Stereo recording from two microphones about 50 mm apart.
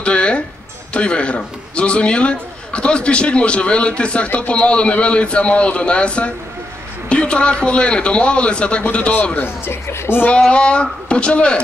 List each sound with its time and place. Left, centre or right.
0.0 s a sound: left
0.9 s a man's voice: left
9.4 s speech: left
10.5 s a man's voice: left